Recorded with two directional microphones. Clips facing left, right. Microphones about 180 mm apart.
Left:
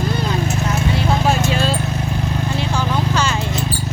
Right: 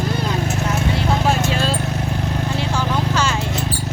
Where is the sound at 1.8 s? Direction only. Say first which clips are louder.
Left 1 dB; 60° right (ahead or behind).